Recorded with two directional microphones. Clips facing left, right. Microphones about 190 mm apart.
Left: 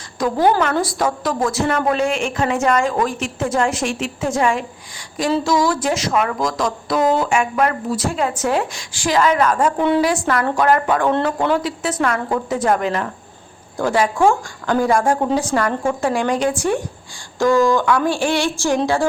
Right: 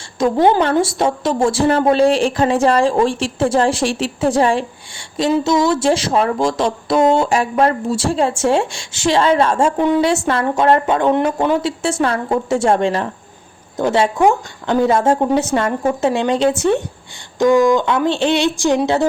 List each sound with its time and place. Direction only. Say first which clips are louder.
0.2 s a woman's voice: right 3 dB; 25° right (ahead or behind)